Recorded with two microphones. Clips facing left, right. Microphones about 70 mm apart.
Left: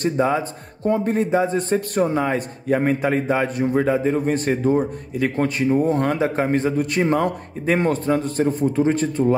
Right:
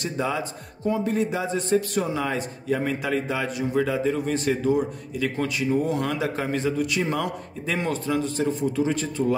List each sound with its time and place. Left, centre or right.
0.0 s a man's voice: left